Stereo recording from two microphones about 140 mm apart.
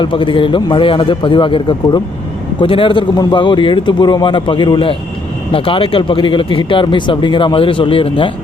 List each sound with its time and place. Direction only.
0.0 s speech: 35° left (ahead or behind)